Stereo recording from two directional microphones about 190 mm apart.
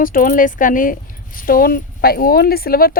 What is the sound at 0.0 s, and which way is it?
Speech, 45° left (ahead or behind).